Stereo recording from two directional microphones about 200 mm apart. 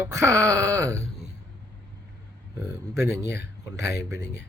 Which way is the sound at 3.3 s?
55° left (ahead or behind).